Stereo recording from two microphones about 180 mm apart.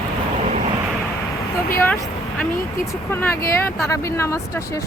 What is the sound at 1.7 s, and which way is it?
Speech, 10° left (ahead or behind).